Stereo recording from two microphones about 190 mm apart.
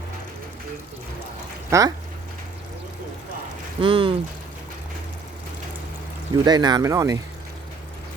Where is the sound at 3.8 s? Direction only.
25° right (ahead or behind).